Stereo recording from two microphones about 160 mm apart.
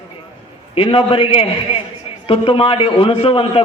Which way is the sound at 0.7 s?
35° left (ahead or behind).